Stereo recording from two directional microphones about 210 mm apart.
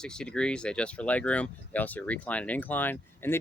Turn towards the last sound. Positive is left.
turn(degrees=10)  # may be behind; listen again after turning